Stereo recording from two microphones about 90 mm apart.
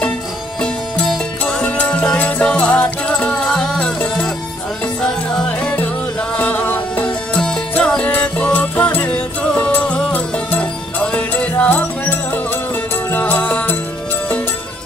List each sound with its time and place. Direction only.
0.6 s music: 5° left (ahead or behind)